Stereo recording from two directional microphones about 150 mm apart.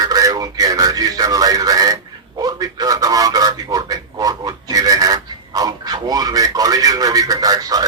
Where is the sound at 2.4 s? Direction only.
25° right (ahead or behind).